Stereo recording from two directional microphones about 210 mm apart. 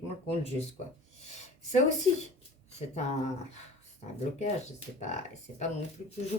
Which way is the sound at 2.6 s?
30° left (ahead or behind).